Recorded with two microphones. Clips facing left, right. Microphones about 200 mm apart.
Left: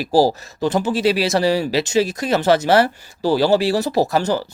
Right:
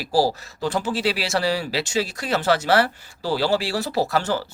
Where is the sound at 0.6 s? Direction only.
20° left (ahead or behind).